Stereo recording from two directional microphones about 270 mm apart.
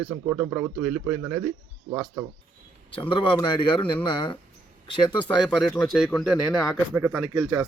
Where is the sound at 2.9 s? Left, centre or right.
Centre.